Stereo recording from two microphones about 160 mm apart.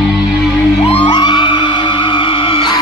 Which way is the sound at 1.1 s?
30° left (ahead or behind).